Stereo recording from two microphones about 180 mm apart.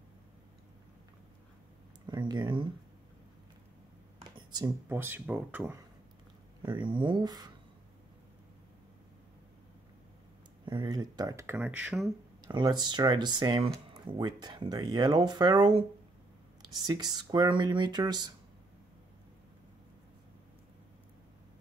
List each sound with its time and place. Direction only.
2.0 s speech: 25° right (ahead or behind)
4.4 s a sound: 20° right (ahead or behind)
4.8 s speech: 10° right (ahead or behind)
6.6 s speech: 25° right (ahead or behind)
10.6 s speech: 25° right (ahead or behind)
11.5 s speech: 5° right (ahead or behind)
12.4 s speech: 25° right (ahead or behind)